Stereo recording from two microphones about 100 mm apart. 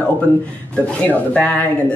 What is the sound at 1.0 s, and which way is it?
Speech, 15° left (ahead or behind).